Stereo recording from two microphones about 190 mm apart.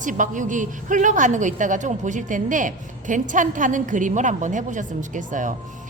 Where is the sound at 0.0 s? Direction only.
45° right (ahead or behind).